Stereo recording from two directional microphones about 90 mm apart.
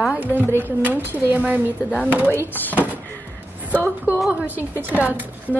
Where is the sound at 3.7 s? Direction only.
20° right (ahead or behind).